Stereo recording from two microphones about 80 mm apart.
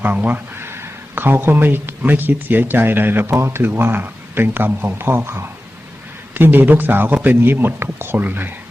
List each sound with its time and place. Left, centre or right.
0.0 s speech: right